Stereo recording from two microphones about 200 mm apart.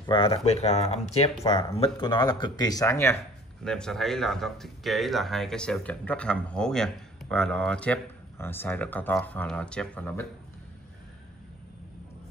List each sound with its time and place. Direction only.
0.0 s speech: 25° left (ahead or behind)
3.6 s speech: 5° left (ahead or behind)